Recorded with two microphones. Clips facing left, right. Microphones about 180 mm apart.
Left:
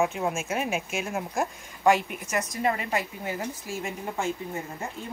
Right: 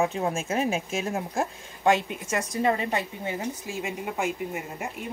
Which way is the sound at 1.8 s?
25° right (ahead or behind).